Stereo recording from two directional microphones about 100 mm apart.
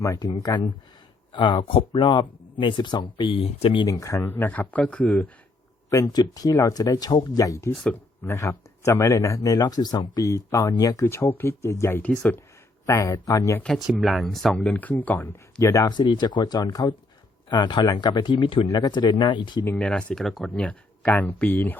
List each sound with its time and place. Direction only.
0.0 s speech: 30° left (ahead or behind)
1.3 s speech: 55° left (ahead or behind); by 3.8 s 75° left (ahead or behind)
3.8 s speech: 35° left (ahead or behind)
4.2 s speech: 20° left (ahead or behind)
5.9 s speech: 40° left (ahead or behind)
11.0 s speech: 25° left (ahead or behind)
12.8 s speech: 30° left (ahead or behind)
13.7 s speech: centre (ahead or behind); by 15.3 s 15° left (ahead or behind)
15.6 s speech: 30° left (ahead or behind)
15.9 s speech: 45° left (ahead or behind)
18.8 s speech: 50° left (ahead or behind)
19.6 s speech: 15° left (ahead or behind)
20.6 s speech: 15° left (ahead or behind)